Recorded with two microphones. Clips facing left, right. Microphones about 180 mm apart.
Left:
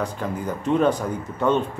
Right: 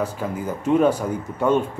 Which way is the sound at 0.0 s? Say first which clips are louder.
Right 1 dB; 5° right (ahead or behind).